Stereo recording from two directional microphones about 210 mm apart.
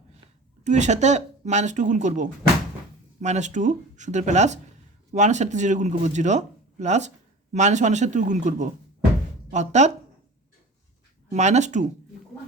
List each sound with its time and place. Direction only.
0.6 s speech: 35° right (ahead or behind)
11.3 s speech: 35° right (ahead or behind)